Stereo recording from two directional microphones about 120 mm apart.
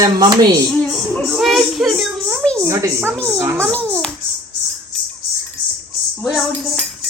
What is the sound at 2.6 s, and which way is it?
Speech, 25° right (ahead or behind).